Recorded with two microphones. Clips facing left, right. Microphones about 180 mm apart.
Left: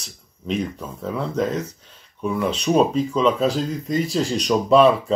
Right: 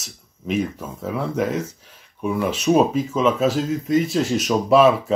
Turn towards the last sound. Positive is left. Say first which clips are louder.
# even
turn(degrees=-5)  # may be behind; listen again after turning